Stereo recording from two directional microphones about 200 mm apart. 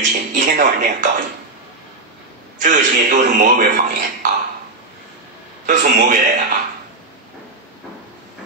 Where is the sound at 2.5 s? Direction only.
40° right (ahead or behind).